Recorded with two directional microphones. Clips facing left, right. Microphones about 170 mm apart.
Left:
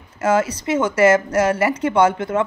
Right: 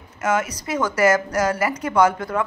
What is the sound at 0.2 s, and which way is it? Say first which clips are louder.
Speech: left 4 dB; 30° left (ahead or behind).